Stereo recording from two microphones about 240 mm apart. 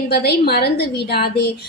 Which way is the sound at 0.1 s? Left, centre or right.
Left.